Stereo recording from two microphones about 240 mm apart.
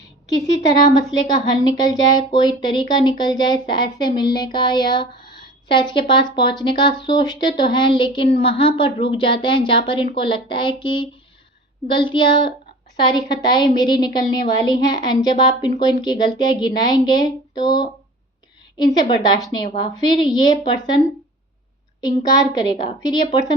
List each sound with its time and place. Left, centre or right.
0.4 s a woman's voice: centre
22.0 s a woman's voice: centre